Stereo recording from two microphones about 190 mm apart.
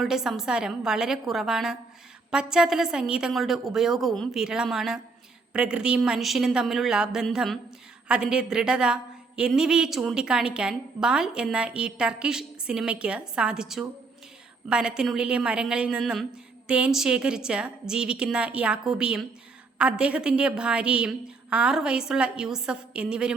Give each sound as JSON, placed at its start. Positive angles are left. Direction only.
{"t": 0.0, "sound": "a woman's voice", "side_deg": -5}